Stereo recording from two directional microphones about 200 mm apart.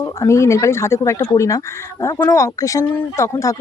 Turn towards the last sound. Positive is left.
turn(degrees=15)  # may be behind; listen again after turning